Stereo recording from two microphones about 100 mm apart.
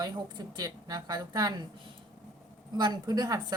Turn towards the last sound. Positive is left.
turn(degrees=-40)  # may be behind; listen again after turning